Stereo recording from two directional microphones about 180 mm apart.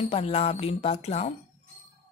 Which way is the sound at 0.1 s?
35° left (ahead or behind).